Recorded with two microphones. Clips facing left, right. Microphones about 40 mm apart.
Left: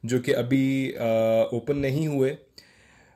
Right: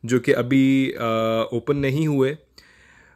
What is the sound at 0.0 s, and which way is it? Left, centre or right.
Speech, right.